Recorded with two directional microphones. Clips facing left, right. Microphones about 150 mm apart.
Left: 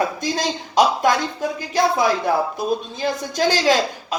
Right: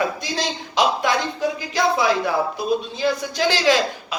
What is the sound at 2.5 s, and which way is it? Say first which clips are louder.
A man's voice: right 1 dB; 45° left (ahead or behind).